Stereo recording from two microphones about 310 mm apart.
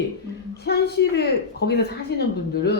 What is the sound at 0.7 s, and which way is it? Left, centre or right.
Speech, left.